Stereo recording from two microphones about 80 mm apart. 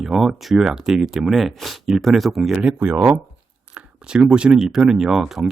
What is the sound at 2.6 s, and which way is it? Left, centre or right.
Speech, centre.